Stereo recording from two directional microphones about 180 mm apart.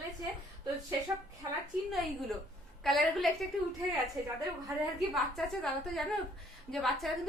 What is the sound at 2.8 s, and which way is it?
Speech, centre (ahead or behind).